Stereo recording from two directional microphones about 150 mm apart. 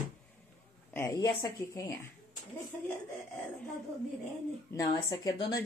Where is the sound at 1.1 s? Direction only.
30° left (ahead or behind).